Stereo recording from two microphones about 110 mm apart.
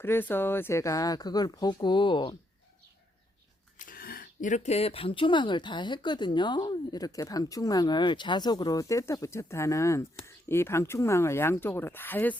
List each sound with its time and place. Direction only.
0.0 s speech: 20° left (ahead or behind); by 2.3 s 45° left (ahead or behind)
4.5 s speech: 85° left; by 12.4 s 15° left (ahead or behind)